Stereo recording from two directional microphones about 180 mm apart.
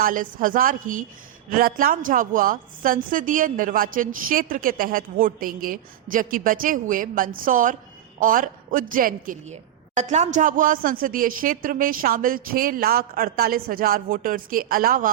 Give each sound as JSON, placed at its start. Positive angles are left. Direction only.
{"t": 0.0, "sound": "speech", "side_deg": -50}